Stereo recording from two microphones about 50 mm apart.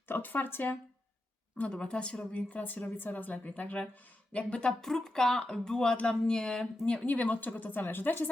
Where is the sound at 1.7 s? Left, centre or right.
Centre.